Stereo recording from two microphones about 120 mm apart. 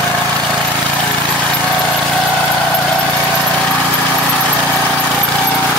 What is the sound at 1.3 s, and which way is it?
Vehicle, 10° left (ahead or behind).